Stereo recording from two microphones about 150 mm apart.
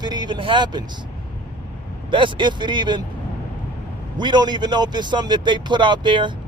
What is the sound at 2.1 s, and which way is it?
Speech, 30° right (ahead or behind).